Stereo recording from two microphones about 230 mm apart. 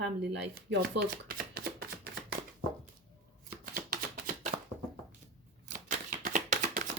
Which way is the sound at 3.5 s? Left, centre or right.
Right.